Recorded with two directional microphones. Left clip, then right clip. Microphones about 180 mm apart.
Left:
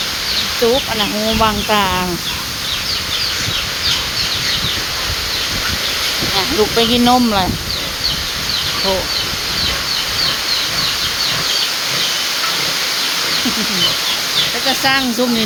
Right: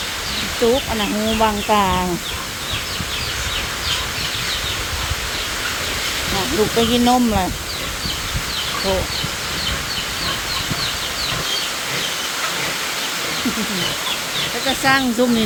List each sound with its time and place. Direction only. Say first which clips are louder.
1.4 s speech: left 1 dB; centre (ahead or behind)
6.7 s speech: left 3 dB; 5° left (ahead or behind)
14.8 s speech: right 2 dB; 10° right (ahead or behind)